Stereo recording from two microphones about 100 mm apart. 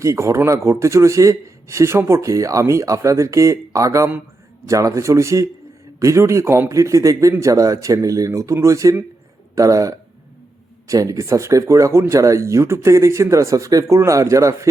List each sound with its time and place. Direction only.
0.0 s speech: 30° right (ahead or behind)